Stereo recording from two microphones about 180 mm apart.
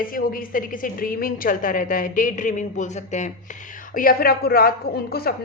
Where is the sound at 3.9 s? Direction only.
55° left (ahead or behind).